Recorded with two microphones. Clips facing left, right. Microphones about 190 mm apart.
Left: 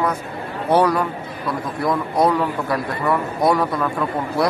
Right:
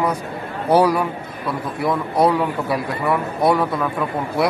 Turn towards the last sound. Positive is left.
turn(degrees=0)  # may be behind; listen again after turning